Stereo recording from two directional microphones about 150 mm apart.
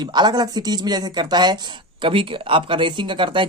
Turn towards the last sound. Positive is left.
turn(degrees=-35)  # may be behind; listen again after turning